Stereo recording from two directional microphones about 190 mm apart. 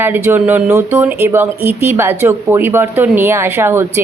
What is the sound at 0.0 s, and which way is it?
Speech, 10° right (ahead or behind).